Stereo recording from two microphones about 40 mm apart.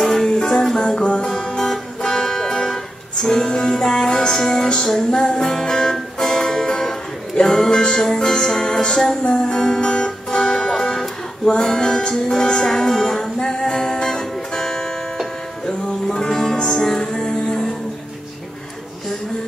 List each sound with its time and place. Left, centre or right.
0.0 s music: centre